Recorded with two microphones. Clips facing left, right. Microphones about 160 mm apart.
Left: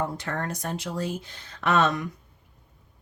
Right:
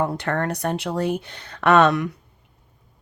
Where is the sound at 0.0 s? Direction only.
65° right (ahead or behind).